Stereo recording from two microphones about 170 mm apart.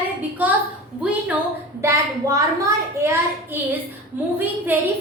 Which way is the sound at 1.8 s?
20° right (ahead or behind).